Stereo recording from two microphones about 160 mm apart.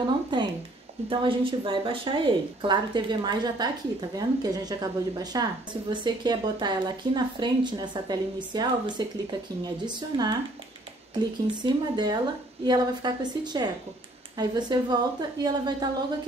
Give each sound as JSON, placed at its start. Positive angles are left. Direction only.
{"t": 0.0, "sound": "a sound", "side_deg": -30}
{"t": 1.0, "sound": "speech", "side_deg": -35}
{"t": 11.6, "sound": "speech", "side_deg": -25}